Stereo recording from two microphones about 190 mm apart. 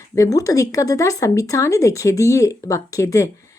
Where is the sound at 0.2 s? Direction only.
20° left (ahead or behind).